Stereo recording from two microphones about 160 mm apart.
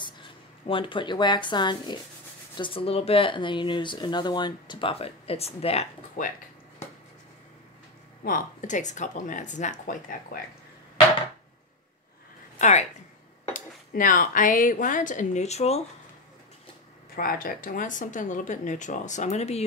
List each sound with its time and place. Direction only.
0.7 s speech: 30° left (ahead or behind)
6.2 s speech: 55° left (ahead or behind)
8.2 s speech: 55° left (ahead or behind)
12.5 s a woman's voice: 45° left (ahead or behind)
13.5 s a woman's voice: 60° left (ahead or behind); by 15.8 s 40° left (ahead or behind)
17.1 s speech: 65° left (ahead or behind); by 19.6 s 45° left (ahead or behind)